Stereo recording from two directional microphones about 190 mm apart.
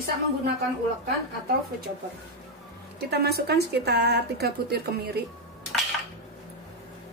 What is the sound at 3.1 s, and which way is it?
Speech, 55° right (ahead or behind).